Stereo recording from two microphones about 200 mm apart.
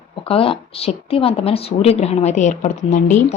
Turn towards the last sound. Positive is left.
turn(degrees=35)  # may be behind; listen again after turning